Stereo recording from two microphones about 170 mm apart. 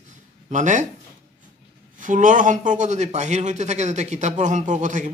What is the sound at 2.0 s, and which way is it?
A man's voice, 50° right (ahead or behind).